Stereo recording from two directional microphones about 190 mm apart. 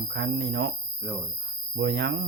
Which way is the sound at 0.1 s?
65° right (ahead or behind).